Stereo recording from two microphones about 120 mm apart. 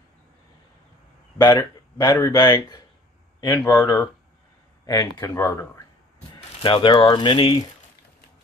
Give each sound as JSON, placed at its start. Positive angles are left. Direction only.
{"t": 1.4, "sound": "speech", "side_deg": 30}
{"t": 6.3, "sound": "speech", "side_deg": 40}